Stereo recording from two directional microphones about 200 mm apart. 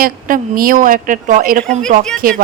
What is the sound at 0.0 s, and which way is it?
Speech, 45° right (ahead or behind).